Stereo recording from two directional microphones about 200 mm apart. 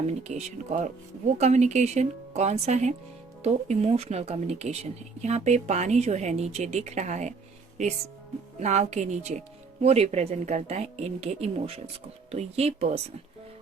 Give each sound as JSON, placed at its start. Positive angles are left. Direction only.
{"t": 0.2, "sound": "speech", "side_deg": -35}
{"t": 8.5, "sound": "speech", "side_deg": -35}